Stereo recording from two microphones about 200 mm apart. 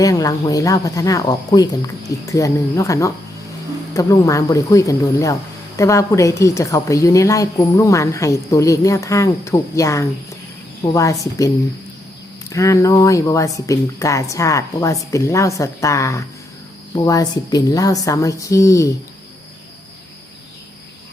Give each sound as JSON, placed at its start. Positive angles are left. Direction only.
{"t": 0.0, "sound": "speech", "side_deg": 15}